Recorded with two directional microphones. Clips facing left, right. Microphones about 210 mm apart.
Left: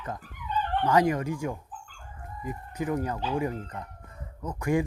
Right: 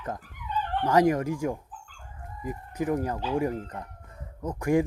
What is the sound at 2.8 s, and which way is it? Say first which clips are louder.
Speech: right 2 dB; 40° right (ahead or behind).